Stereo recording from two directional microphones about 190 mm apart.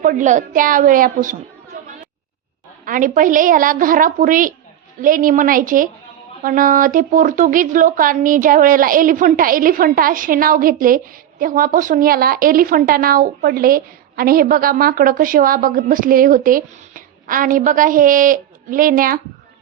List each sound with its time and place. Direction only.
0.0 s speech: 40° right (ahead or behind)
2.8 s speech: 45° right (ahead or behind)